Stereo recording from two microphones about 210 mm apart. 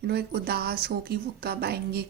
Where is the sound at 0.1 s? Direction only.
50° right (ahead or behind).